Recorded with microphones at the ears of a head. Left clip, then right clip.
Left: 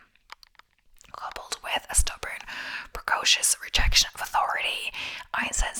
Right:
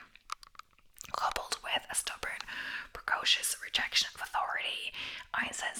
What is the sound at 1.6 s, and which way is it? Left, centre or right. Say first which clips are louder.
Whispering: left 6 dB; left.